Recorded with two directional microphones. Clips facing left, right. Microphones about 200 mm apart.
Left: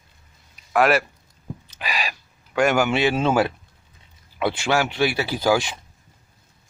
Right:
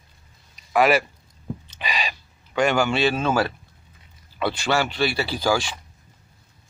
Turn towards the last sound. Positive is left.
turn(degrees=20)  # may be behind; listen again after turning